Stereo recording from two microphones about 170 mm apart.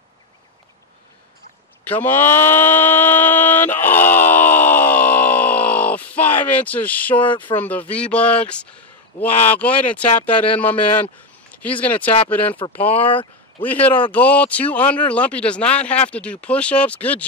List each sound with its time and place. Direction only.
1.9 s a sound: 10° left (ahead or behind)
7.5 s speech: 10° left (ahead or behind)
11.8 s speech: 10° left (ahead or behind)
13.0 s speech: 30° left (ahead or behind)
14.1 s speech: 10° left (ahead or behind)